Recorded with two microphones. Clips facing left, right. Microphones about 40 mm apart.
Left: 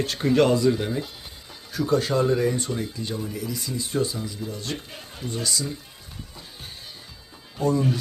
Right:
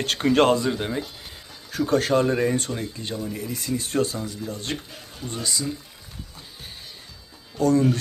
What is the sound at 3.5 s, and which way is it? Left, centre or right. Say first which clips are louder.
Speech: right 3 dB; right.